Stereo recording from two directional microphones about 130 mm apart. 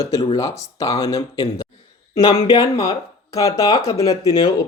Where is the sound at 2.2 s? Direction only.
35° left (ahead or behind).